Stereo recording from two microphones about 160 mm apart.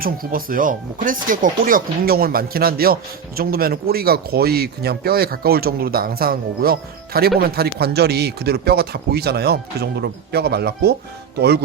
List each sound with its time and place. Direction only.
0.0 s speech: 65° right (ahead or behind); by 11.6 s 90° right